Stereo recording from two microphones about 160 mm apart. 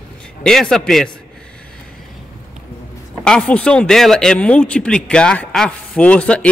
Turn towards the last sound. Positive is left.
turn(degrees=5)  # may be behind; listen again after turning